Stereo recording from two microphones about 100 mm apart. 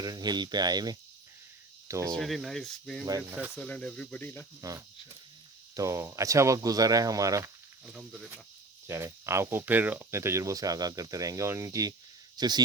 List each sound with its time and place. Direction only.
0.0 s speech: 40° right (ahead or behind)
1.9 s speech: 30° right (ahead or behind)
2.1 s speech: centre (ahead or behind)
3.1 s speech: 30° right (ahead or behind)
3.6 s speech: 10° left (ahead or behind)
4.6 s speech: 35° right (ahead or behind)
8.9 s speech: 30° right (ahead or behind)
12.4 s speech: 45° right (ahead or behind)